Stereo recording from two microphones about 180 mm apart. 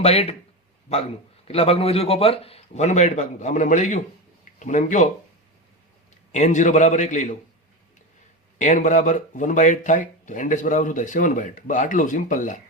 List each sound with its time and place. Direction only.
0.0 s a man's voice: 35° left (ahead or behind)
1.5 s a man's voice: 35° left (ahead or behind)
6.3 s speech: 40° left (ahead or behind)
8.5 s speech: 45° left (ahead or behind)